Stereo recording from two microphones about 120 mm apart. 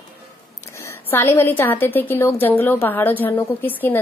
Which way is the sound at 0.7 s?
20° left (ahead or behind).